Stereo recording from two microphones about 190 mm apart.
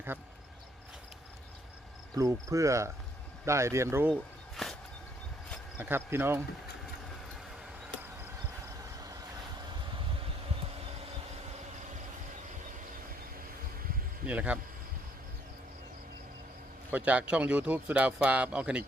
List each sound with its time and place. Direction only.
2.1 s speech: 15° right (ahead or behind)
4.1 s a sound: centre (ahead or behind)
5.7 s speech: 10° right (ahead or behind)
14.3 s speech: 5° right (ahead or behind)
16.9 s speech: 5° right (ahead or behind)